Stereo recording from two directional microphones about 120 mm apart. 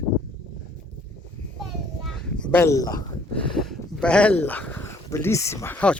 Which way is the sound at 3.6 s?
10° left (ahead or behind).